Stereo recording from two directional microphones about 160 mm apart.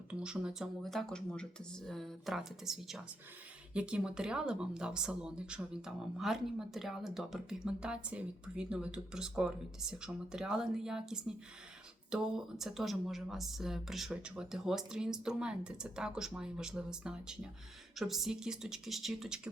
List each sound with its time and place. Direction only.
0.1 s speech: 5° right (ahead or behind)